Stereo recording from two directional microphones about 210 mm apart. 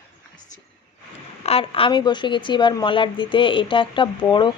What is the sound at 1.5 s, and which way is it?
Speech, 25° left (ahead or behind).